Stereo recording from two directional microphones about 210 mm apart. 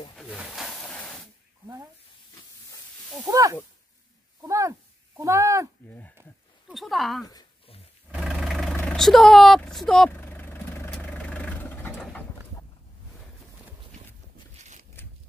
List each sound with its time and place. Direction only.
0.1 s snake: centre (ahead or behind)
3.3 s speech: 15° right (ahead or behind)
6.7 s speech: centre (ahead or behind)
7.2 s a sound: 20° left (ahead or behind)
8.1 s vehicle: centre (ahead or behind)
15.0 s a sound: 10° left (ahead or behind)